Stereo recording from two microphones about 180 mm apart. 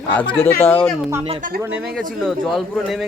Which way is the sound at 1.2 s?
35° right (ahead or behind).